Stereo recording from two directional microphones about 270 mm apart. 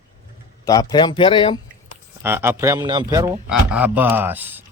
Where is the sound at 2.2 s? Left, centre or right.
Centre.